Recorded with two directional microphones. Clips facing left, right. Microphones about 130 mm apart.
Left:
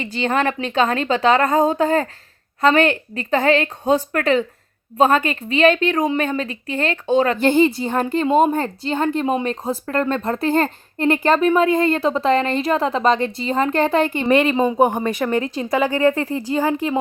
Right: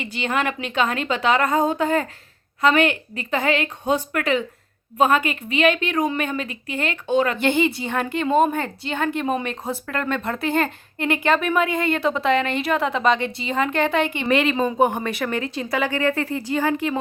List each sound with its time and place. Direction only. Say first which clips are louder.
0.0 s a woman's voice: left 4 dB; 35° left (ahead or behind)
14.3 s a woman's voice: left 4 dB; 30° left (ahead or behind)
15.4 s a woman's voice: left 4 dB; 40° left (ahead or behind)